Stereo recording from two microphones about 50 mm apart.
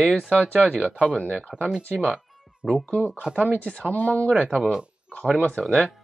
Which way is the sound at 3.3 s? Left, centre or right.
Left.